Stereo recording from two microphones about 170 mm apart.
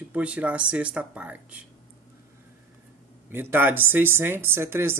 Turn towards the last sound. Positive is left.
turn(degrees=-15)  # may be behind; listen again after turning